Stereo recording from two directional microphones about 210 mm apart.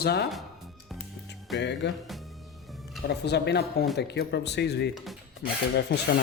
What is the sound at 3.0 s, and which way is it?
Speech, 50° left (ahead or behind).